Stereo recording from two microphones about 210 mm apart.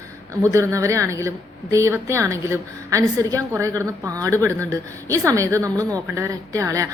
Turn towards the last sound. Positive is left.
turn(degrees=-15)  # may be behind; listen again after turning